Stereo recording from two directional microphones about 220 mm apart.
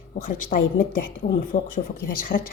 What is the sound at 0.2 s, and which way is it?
A woman's voice, 40° left (ahead or behind).